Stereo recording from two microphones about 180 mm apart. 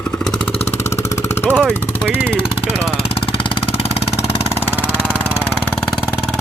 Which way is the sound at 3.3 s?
30° left (ahead or behind).